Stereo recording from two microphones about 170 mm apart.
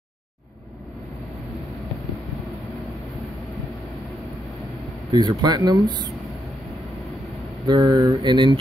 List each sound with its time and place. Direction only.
5.1 s speech: 25° right (ahead or behind)
7.6 s speech: 25° right (ahead or behind)